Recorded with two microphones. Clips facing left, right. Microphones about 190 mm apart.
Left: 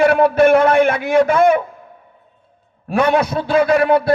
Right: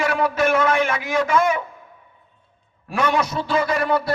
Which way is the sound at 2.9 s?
60° left (ahead or behind).